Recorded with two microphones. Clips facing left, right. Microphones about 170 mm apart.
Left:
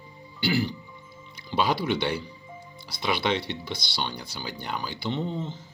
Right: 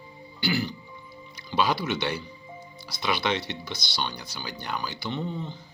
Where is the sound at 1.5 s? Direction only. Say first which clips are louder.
Left 1 dB; 25° left (ahead or behind).